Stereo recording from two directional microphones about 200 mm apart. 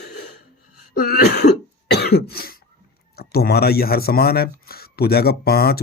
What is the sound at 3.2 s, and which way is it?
Speech, 50° left (ahead or behind).